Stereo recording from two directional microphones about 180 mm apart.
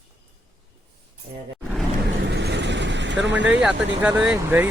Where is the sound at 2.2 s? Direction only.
65° right (ahead or behind).